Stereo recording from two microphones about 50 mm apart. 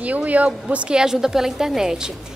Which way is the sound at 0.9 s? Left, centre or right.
Centre.